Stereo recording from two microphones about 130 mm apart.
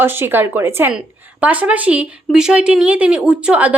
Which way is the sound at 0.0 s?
15° right (ahead or behind).